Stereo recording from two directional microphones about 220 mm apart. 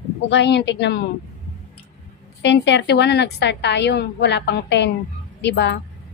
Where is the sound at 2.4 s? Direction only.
50° left (ahead or behind).